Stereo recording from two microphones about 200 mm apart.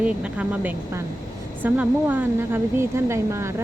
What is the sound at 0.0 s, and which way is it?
A woman's voice, 5° right (ahead or behind).